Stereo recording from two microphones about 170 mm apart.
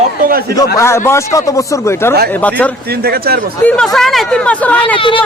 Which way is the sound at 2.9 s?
65° right (ahead or behind).